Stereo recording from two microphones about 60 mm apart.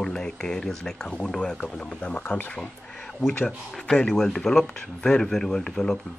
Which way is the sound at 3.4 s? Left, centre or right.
Centre.